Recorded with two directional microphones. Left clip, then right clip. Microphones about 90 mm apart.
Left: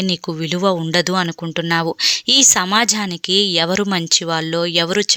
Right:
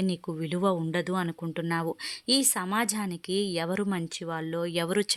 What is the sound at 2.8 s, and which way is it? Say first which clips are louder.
Speech: left 13 dB; 30° left (ahead or behind).